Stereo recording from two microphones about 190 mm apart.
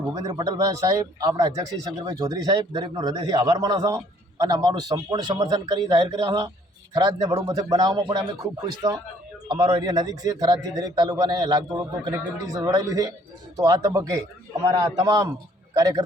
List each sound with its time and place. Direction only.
0.1 s speech: 20° right (ahead or behind)